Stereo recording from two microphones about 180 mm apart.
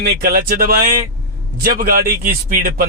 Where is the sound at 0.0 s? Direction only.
55° right (ahead or behind).